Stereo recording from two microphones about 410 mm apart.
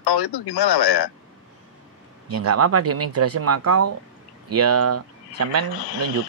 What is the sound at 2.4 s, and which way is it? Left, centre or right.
Speech, right.